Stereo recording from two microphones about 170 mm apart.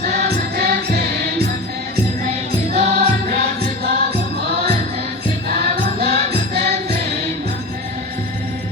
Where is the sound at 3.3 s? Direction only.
70° right (ahead or behind).